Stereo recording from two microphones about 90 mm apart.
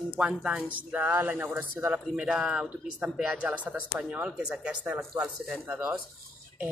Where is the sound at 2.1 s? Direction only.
5° right (ahead or behind).